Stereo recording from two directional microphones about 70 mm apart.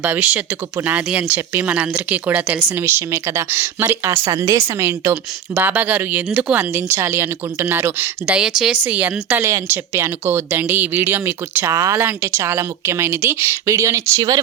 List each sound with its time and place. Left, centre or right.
0.0 s speech: right
1.6 s a woman's voice: centre; by 5.1 s right
5.1 s speech: right
6.7 s a woman's voice: right
8.3 s speech: centre
9.4 s a woman's voice: right
11.7 s speech: right
11.9 s a woman's voice: right